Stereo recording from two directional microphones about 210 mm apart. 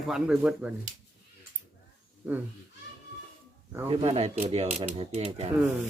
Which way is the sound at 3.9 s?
25° right (ahead or behind).